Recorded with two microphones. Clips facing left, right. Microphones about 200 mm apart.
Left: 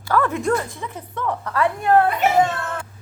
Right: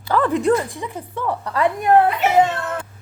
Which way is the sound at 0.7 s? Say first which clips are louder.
Right 2 dB; 10° right (ahead or behind).